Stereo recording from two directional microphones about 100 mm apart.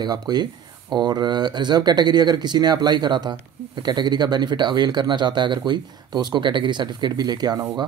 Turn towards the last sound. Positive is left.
turn(degrees=-40)  # may be behind; listen again after turning